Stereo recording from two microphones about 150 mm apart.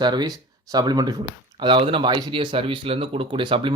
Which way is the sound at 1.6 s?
35° right (ahead or behind).